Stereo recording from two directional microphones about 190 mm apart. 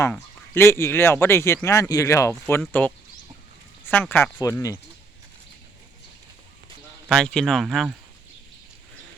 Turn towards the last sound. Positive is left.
turn(degrees=0)  # may be behind; listen again after turning